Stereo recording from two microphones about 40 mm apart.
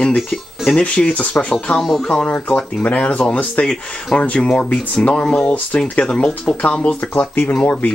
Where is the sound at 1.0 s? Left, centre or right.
Centre.